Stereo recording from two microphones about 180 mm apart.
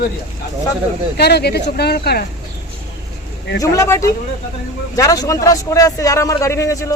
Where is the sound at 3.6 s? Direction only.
20° left (ahead or behind).